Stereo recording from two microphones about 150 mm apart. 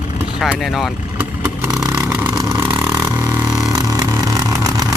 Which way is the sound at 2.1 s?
10° right (ahead or behind).